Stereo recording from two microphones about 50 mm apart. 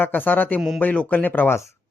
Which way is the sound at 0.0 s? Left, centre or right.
Left.